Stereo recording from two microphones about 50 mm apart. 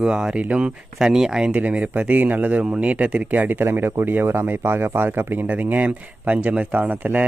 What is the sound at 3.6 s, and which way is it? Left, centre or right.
A man's voice, right.